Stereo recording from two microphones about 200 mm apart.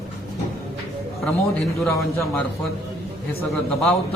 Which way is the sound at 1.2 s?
Centre (ahead or behind).